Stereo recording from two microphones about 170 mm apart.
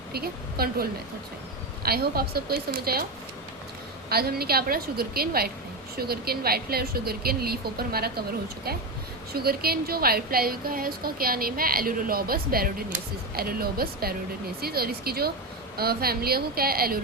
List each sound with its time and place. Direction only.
0.1 s a woman's voice: 65° right (ahead or behind)
4.1 s a woman's voice: 65° right (ahead or behind)
9.3 s a woman's voice: 65° right (ahead or behind)